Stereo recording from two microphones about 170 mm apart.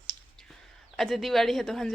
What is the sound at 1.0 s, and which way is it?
Speech, centre (ahead or behind).